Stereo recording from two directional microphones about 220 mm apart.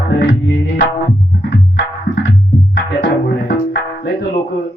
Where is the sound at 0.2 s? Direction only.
50° left (ahead or behind).